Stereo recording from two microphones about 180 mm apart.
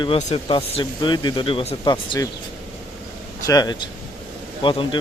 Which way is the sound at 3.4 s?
20° left (ahead or behind).